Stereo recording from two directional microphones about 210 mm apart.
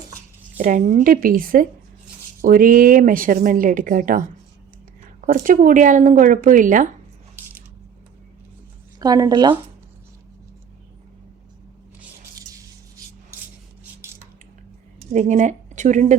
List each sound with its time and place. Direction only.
0.6 s a woman's voice: 40° right (ahead or behind)
5.2 s a woman's voice: 40° right (ahead or behind)
9.0 s speech: 20° right (ahead or behind)
15.1 s a woman's voice: 35° right (ahead or behind)